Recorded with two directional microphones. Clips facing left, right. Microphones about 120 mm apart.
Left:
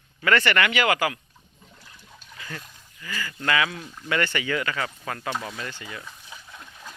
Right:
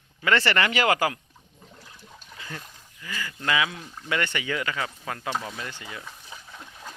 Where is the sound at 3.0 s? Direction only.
15° right (ahead or behind).